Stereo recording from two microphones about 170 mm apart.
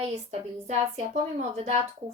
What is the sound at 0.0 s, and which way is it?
A woman's voice, 40° right (ahead or behind).